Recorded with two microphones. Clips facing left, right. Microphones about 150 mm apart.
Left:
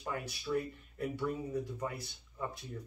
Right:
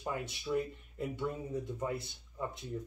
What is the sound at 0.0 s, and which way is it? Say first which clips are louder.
Speech: right 1 dB; 20° right (ahead or behind).